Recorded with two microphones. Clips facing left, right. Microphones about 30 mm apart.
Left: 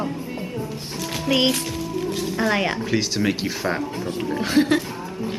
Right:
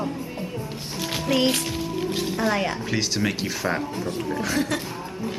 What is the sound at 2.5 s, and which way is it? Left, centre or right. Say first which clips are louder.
Speech: left 3 dB; left.